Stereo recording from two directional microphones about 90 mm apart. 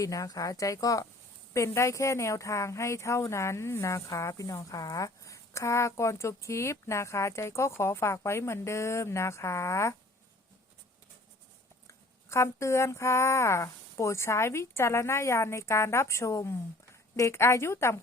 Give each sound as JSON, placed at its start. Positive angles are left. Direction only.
{"t": 0.0, "sound": "a woman's voice", "side_deg": 40}
{"t": 11.9, "sound": "a woman's voice", "side_deg": 30}